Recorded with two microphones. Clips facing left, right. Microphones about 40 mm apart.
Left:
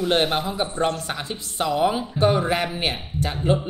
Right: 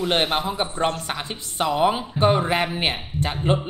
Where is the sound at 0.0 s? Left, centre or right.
Centre.